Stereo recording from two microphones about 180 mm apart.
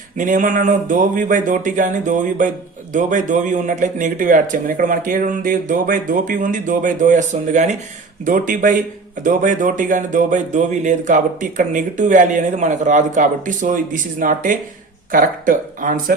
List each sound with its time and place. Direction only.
0.2 s speech: 45° right (ahead or behind)